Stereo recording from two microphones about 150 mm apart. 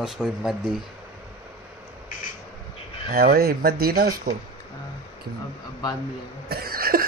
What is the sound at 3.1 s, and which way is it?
Speech, 90° right.